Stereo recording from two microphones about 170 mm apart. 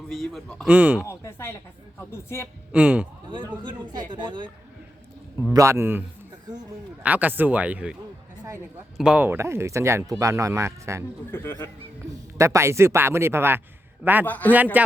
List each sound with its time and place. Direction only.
0.1 s speech: centre (ahead or behind)
1.0 s speech: 15° left (ahead or behind)
2.7 s speech: 10° right (ahead or behind)
3.2 s a woman's voice: 25° right (ahead or behind)
5.5 s speech: 15° right (ahead or behind)
9.0 s speech: 5° right (ahead or behind)
11.3 s speech: 10° left (ahead or behind)
12.4 s speech: 15° right (ahead or behind)
14.3 s speech: 10° left (ahead or behind)
14.5 s speech: 10° right (ahead or behind)